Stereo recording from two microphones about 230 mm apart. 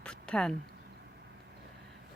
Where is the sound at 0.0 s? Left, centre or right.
Centre.